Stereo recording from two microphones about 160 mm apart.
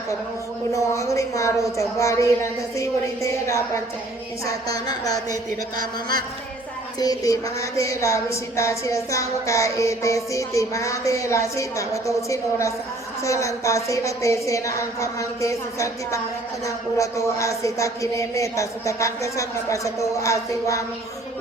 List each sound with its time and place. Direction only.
0.7 s a woman's voice: 20° left (ahead or behind)
7.0 s a woman's voice: 20° left (ahead or behind)